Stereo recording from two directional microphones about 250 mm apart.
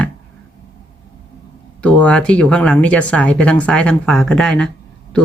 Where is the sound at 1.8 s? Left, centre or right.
Centre.